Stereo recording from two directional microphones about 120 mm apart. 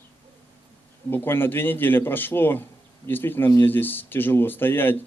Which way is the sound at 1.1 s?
15° left (ahead or behind).